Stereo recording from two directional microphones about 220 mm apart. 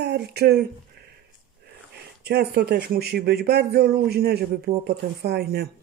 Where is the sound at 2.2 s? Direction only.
45° right (ahead or behind).